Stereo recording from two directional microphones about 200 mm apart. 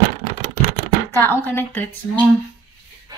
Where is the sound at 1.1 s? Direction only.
10° left (ahead or behind).